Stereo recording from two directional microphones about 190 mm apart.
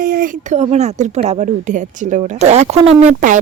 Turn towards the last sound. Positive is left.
turn(degrees=-40)  # may be behind; listen again after turning